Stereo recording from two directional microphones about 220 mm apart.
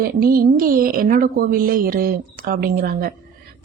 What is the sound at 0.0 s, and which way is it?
A woman's voice, 40° right (ahead or behind).